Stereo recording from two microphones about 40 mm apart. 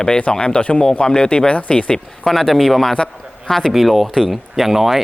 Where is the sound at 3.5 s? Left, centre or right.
Centre.